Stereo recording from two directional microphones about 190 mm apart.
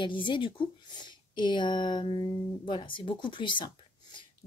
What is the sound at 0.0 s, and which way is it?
Speech, 25° left (ahead or behind).